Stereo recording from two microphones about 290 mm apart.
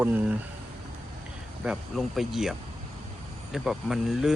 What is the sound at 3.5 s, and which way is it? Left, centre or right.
Speech, centre.